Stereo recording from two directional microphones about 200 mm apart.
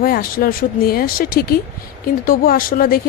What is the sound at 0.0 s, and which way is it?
A woman's voice, 50° left (ahead or behind).